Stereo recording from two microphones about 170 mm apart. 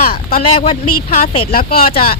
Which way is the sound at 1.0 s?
50° left (ahead or behind).